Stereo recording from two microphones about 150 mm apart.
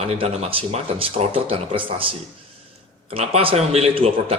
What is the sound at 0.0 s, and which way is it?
A man's voice, 40° right (ahead or behind).